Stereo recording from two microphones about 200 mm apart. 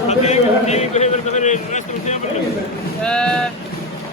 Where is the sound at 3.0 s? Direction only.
5° left (ahead or behind).